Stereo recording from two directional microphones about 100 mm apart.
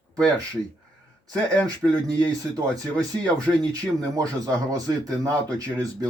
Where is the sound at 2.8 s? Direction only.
35° right (ahead or behind).